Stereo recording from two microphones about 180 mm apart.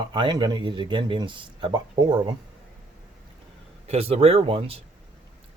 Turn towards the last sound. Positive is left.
turn(degrees=-30)  # may be behind; listen again after turning